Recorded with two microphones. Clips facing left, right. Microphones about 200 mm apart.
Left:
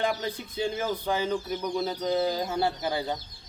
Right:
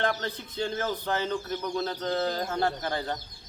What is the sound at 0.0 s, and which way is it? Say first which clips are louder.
Speech: left 1 dB; 10° left (ahead or behind).